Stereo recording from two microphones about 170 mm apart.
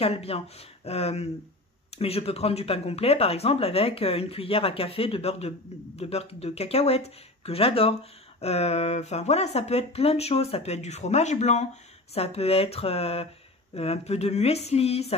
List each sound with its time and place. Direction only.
0.0 s speech: 35° left (ahead or behind)